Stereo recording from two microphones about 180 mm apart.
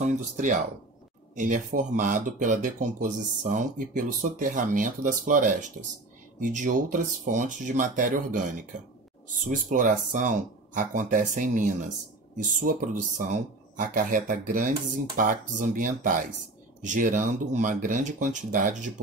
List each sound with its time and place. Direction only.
0.0 s speech: 45° right (ahead or behind)